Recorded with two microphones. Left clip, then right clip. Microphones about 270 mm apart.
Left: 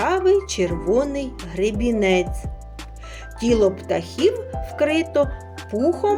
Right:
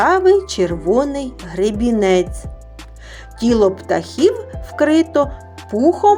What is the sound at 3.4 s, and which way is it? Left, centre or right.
Speech, centre.